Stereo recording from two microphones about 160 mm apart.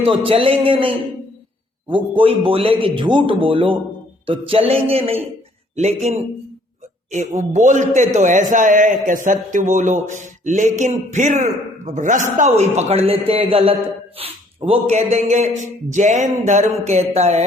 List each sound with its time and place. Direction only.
0.3 s a man's voice: 35° right (ahead or behind)